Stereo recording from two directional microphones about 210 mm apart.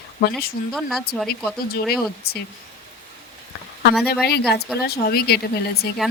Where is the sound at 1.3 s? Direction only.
50° left (ahead or behind).